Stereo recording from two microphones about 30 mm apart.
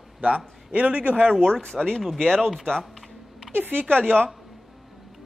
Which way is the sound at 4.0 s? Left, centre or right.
Right.